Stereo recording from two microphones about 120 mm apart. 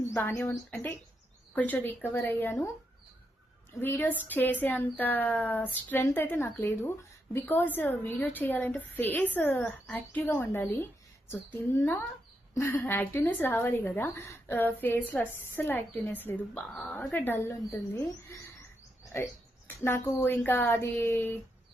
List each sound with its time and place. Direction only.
0.1 s a woman's voice: 20° left (ahead or behind)
3.8 s a woman's voice: 15° left (ahead or behind)